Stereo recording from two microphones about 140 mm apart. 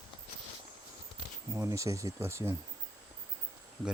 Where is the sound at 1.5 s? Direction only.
20° right (ahead or behind).